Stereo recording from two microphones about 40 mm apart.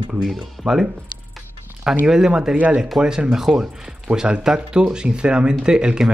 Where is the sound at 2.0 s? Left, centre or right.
Centre.